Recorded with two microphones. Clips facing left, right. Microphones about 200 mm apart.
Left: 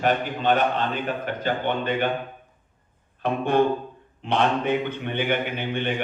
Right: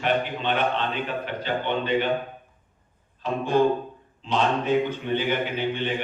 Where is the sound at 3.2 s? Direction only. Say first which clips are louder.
Even; 60° left (ahead or behind).